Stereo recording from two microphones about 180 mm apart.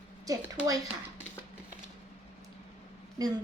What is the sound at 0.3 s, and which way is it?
Speech, 20° right (ahead or behind).